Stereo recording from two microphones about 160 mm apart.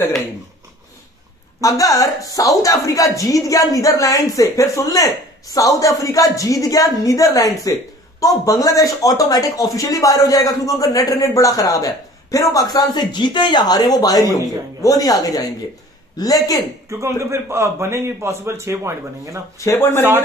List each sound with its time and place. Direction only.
1.6 s a woman's voice: 20° left (ahead or behind)
16.9 s a man's voice: 20° right (ahead or behind)
19.6 s speech: 20° left (ahead or behind)